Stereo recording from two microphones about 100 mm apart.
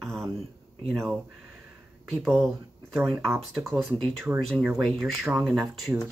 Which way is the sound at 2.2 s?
Centre (ahead or behind).